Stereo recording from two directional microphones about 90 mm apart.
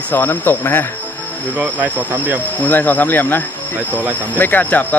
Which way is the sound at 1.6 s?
20° right (ahead or behind).